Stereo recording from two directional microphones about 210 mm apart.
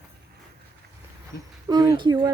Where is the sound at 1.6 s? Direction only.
15° right (ahead or behind).